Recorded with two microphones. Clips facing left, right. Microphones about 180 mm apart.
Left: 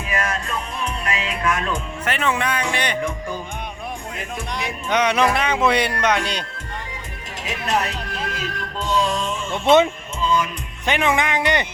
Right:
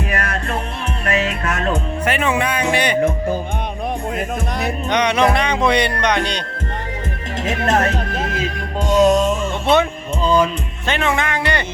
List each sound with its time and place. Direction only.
0.1 s music: 60° right (ahead or behind)
1.2 s music: 45° right (ahead or behind)
2.0 s speech: 10° right (ahead or behind)
4.9 s speech: 5° left (ahead or behind)
7.5 s speech: 50° right (ahead or behind)
9.0 s music: 45° right (ahead or behind)
10.8 s speech: 15° left (ahead or behind)